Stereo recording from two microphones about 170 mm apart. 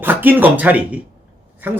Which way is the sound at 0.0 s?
10° right (ahead or behind).